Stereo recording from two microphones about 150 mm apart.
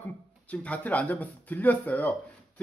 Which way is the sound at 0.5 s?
10° left (ahead or behind).